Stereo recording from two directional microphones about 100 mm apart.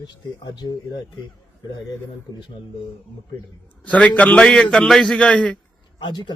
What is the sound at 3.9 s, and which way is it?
A man's voice, 15° left (ahead or behind).